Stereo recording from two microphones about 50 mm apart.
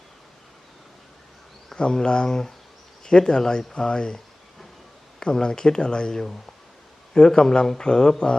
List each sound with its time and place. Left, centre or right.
1.7 s speech: centre
5.2 s speech: centre